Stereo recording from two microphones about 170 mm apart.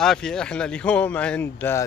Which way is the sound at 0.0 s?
5° left (ahead or behind).